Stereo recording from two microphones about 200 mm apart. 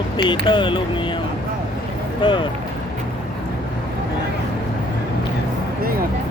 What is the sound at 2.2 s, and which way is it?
Speech, 25° left (ahead or behind).